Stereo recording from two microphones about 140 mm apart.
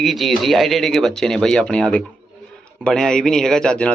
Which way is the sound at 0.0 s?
Centre (ahead or behind).